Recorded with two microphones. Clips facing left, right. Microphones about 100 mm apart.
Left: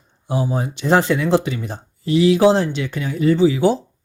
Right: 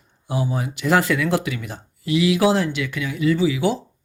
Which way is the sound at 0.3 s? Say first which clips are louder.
Left 3 dB; 30° left (ahead or behind).